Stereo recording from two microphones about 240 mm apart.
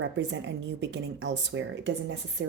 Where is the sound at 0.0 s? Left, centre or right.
Right.